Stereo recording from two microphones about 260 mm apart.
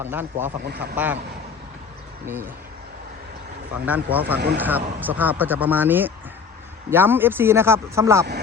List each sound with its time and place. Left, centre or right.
0.0 s speech: centre
0.6 s speech: right
0.9 s speech: centre
2.2 s speech: centre
3.8 s speech: centre